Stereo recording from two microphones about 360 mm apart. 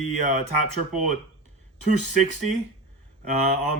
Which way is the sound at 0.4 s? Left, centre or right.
Left.